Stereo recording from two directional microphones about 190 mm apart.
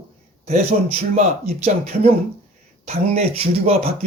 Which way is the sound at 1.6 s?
35° right (ahead or behind).